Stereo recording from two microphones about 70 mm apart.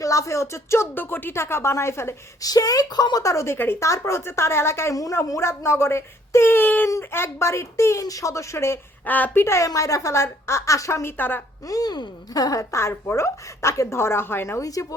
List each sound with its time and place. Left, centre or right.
0.0 s speech: left
0.9 s a woman's voice: left
2.4 s speech: left
3.2 s a woman's voice: left
8.0 s a woman's voice: left
9.0 s a woman's voice: left
9.4 s a woman's voice: left
9.6 s a woman's voice: left
11.2 s a woman's voice: left
11.6 s speech: left
12.7 s a woman's voice: left
14.6 s speech: left